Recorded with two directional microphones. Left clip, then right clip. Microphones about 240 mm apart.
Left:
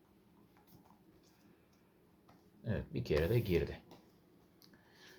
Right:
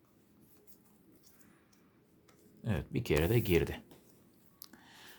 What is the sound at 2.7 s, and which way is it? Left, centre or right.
Speech, right.